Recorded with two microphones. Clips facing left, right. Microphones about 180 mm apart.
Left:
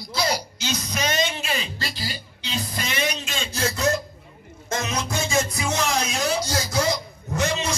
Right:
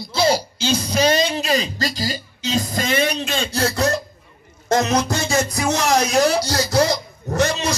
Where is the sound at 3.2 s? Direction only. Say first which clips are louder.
Right 6 dB; 65° right (ahead or behind).